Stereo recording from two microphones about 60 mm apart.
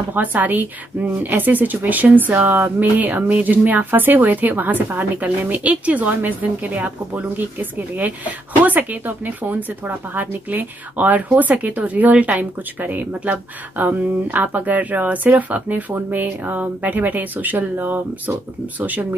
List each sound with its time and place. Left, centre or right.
0.1 s speech: right